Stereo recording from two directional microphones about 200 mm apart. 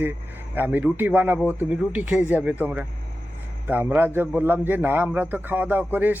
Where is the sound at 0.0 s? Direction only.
10° right (ahead or behind).